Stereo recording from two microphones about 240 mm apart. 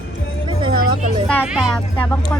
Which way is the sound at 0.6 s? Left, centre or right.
Centre.